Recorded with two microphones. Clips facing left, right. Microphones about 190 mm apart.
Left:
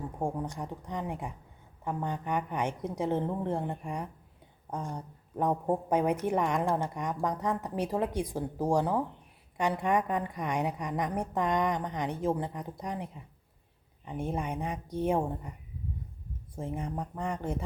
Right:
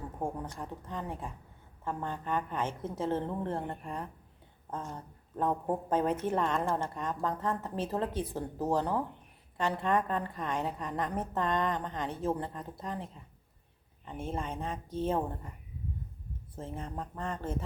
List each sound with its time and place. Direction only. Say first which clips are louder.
0.2 s a woman's voice: left 3 dB; 15° left (ahead or behind)
16.6 s a woman's voice: left 4 dB; 15° left (ahead or behind)